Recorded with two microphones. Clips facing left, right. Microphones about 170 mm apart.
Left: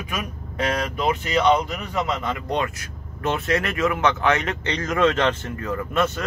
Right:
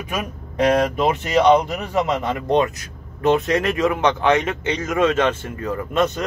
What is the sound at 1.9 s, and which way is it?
Speech, 45° right (ahead or behind).